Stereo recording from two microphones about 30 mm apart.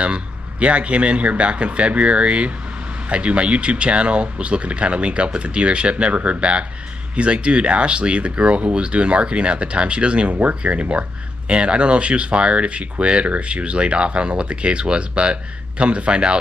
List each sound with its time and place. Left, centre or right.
0.0 s speech: right